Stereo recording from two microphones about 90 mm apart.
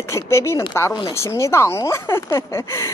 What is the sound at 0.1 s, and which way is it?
Speech, 30° left (ahead or behind).